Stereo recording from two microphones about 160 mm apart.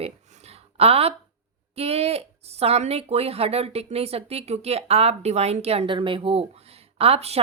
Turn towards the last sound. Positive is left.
turn(degrees=-40)  # may be behind; listen again after turning